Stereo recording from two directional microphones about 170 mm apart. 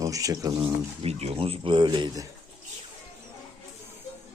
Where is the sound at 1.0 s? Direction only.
40° right (ahead or behind).